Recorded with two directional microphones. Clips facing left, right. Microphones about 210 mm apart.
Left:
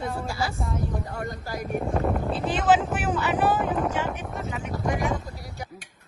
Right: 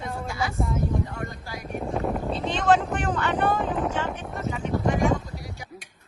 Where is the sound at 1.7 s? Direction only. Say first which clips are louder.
Left 1 dB; centre (ahead or behind).